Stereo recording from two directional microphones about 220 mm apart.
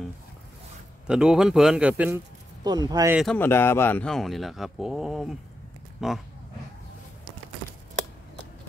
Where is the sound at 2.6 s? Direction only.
20° right (ahead or behind).